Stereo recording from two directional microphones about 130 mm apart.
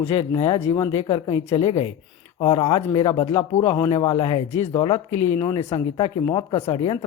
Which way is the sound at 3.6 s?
25° left (ahead or behind).